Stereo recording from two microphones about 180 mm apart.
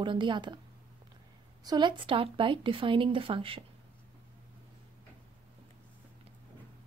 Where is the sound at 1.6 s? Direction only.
25° right (ahead or behind).